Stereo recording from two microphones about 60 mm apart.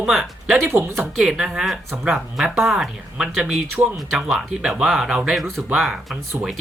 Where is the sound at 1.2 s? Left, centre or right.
Centre.